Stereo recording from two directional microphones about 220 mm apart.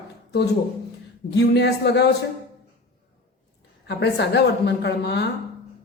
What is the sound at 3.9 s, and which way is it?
A man's voice, 50° left (ahead or behind).